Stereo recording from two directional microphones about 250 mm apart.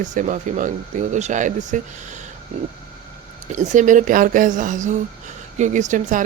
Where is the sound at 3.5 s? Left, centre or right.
Right.